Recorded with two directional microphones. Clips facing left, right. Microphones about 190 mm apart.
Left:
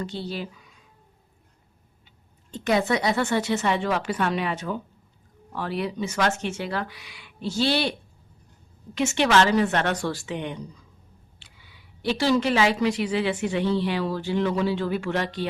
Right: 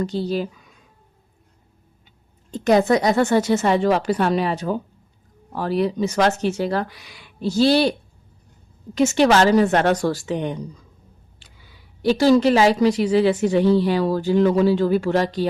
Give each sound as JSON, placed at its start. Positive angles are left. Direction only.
{"t": 0.0, "sound": "speech", "side_deg": -40}
{"t": 2.5, "sound": "speech", "side_deg": -40}
{"t": 9.0, "sound": "speech", "side_deg": -40}